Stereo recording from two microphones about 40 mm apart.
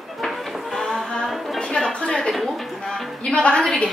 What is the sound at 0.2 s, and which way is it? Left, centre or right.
Music, centre.